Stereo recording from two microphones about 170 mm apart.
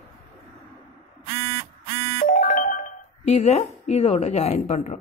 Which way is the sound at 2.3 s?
55° left (ahead or behind).